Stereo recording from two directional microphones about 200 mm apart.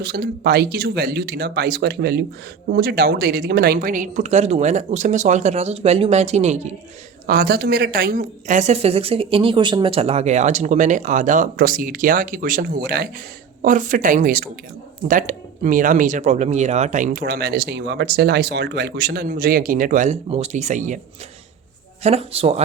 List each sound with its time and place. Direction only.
0.0 s a woman's voice: 50° right (ahead or behind); by 6.7 s 35° right (ahead or behind)
7.3 s a woman's voice: 50° right (ahead or behind)
22.0 s a woman's voice: 30° right (ahead or behind)